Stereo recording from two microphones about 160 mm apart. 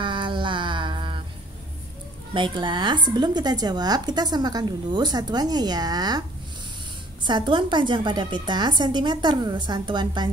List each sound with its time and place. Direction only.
0.0 s a sound: 30° right (ahead or behind)
2.3 s speech: 30° right (ahead or behind)
7.2 s speech: 30° right (ahead or behind)